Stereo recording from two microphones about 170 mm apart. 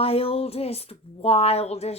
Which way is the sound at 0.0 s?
35° left (ahead or behind).